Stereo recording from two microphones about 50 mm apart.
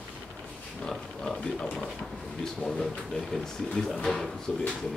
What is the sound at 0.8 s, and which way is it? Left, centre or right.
Pig, centre.